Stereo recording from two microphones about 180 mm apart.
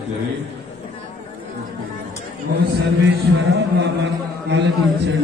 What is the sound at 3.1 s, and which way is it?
A man's voice, 70° right (ahead or behind).